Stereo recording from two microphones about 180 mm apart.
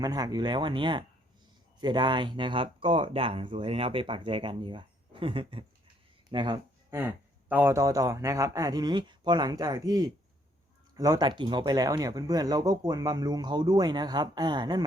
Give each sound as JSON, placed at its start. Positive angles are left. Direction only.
{"t": 0.0, "sound": "speech", "side_deg": -20}
{"t": 6.9, "sound": "speech", "side_deg": -10}